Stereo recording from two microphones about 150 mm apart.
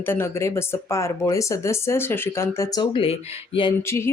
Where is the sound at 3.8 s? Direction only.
15° left (ahead or behind).